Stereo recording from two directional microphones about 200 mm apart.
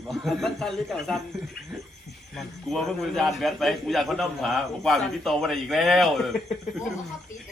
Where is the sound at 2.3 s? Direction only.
Centre (ahead or behind).